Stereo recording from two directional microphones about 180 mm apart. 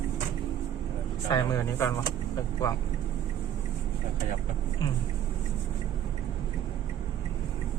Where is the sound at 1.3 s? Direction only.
15° left (ahead or behind).